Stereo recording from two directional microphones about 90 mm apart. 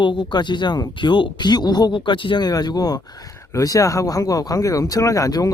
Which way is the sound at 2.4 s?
50° left (ahead or behind).